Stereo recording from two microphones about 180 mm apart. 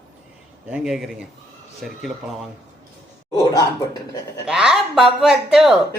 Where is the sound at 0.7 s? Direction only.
Centre (ahead or behind).